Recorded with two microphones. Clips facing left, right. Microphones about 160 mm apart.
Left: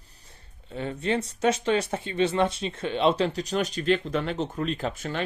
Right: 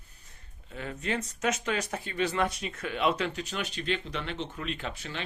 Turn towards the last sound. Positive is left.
turn(degrees=45)  # may be behind; listen again after turning